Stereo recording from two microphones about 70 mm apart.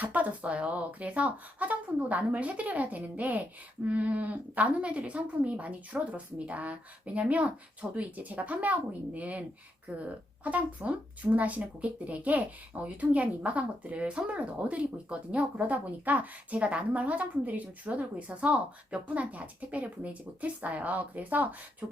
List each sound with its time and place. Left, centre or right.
0.0 s speech: right